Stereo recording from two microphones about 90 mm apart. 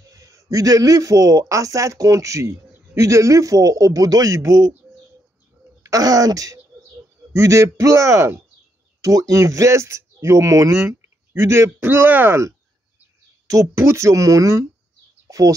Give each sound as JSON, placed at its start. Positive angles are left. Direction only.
{"t": 0.0, "sound": "a man's voice", "side_deg": -40}
{"t": 5.8, "sound": "speech", "side_deg": -40}
{"t": 10.9, "sound": "speech", "side_deg": -25}
{"t": 13.5, "sound": "speech", "side_deg": -35}